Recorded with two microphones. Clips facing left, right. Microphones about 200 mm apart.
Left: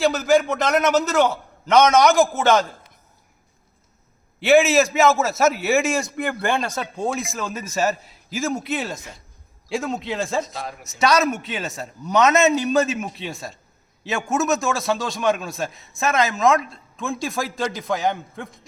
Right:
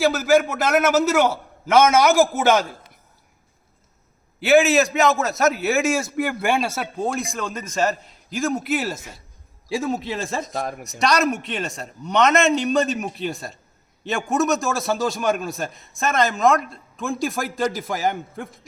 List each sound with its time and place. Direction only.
0.0 s a man's voice: 5° right (ahead or behind)
4.4 s a man's voice: centre (ahead or behind)
10.5 s speech: 50° right (ahead or behind)
11.0 s a man's voice: centre (ahead or behind)